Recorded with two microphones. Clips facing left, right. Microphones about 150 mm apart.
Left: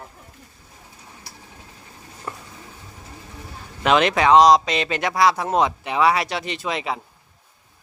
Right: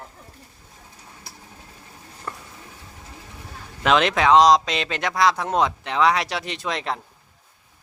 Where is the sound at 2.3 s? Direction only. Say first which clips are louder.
Left 1 dB; 10° left (ahead or behind).